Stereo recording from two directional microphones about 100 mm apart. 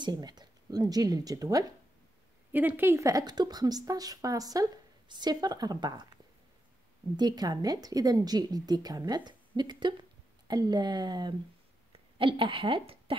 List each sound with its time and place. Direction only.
0.0 s speech: 45° right (ahead or behind)
2.5 s a woman's voice: 20° right (ahead or behind); by 6.0 s 45° right (ahead or behind)
7.2 s a woman's voice: 45° right (ahead or behind)
12.2 s speech: 60° right (ahead or behind)